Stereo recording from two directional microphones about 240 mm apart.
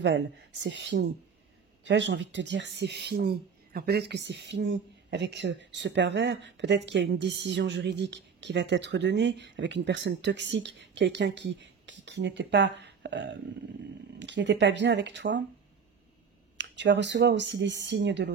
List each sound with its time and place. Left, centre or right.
0.0 s a woman's voice: right
16.5 s a woman's voice: right